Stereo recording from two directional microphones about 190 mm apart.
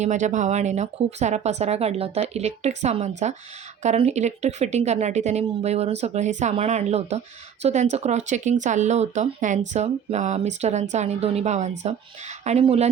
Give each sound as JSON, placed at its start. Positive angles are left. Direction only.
{"t": 0.0, "sound": "speech", "side_deg": -40}